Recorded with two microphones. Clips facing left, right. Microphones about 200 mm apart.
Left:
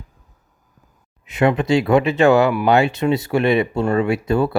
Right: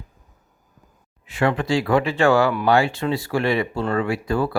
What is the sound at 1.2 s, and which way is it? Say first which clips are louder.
Speech: left 4 dB; 20° left (ahead or behind).